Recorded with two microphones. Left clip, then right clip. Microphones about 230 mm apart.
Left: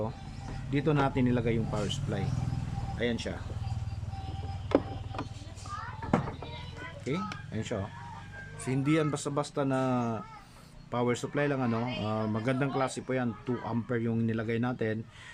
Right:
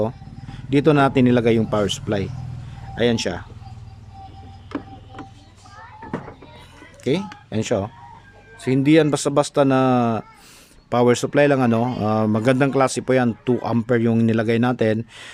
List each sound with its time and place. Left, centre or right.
0.7 s a man's voice: right
7.0 s a man's voice: right